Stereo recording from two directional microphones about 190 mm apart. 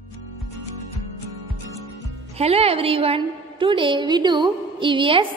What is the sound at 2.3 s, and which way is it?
A woman's voice, 30° right (ahead or behind).